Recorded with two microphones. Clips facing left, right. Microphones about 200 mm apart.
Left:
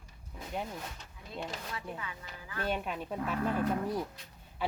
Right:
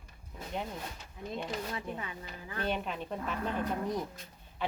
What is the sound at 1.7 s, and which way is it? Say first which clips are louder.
Speech: right 2 dB; 30° right (ahead or behind).